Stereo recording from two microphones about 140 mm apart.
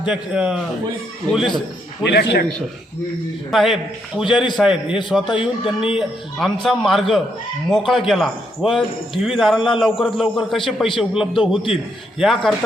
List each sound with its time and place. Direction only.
0.0 s a man's voice: 5° right (ahead or behind)
3.5 s a man's voice: centre (ahead or behind)
5.3 s speech: 40° left (ahead or behind)
5.9 s a man's voice: centre (ahead or behind)